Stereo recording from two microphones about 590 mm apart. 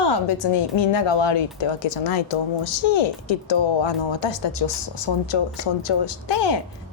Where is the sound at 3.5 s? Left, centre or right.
Left.